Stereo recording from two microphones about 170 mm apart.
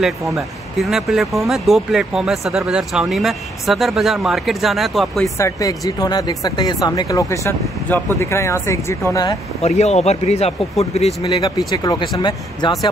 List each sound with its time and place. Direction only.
0.7 s speech: centre (ahead or behind)
5.4 s speech: 20° left (ahead or behind)
9.6 s speech: 40° left (ahead or behind)
11.2 s speech: 25° left (ahead or behind)